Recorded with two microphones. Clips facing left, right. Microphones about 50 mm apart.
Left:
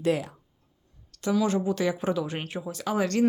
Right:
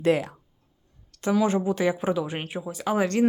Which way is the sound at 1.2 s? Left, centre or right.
Right.